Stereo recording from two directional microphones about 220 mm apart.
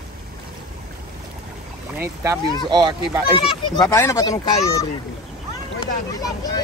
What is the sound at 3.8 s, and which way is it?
Speech, 15° left (ahead or behind).